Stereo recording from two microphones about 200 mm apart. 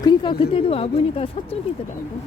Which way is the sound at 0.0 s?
20° left (ahead or behind).